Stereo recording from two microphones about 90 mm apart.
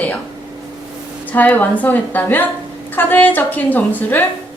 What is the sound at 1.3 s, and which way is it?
A woman's voice, 20° left (ahead or behind).